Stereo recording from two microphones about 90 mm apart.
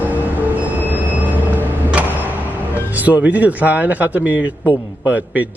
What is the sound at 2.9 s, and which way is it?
A man's voice, 20° right (ahead or behind).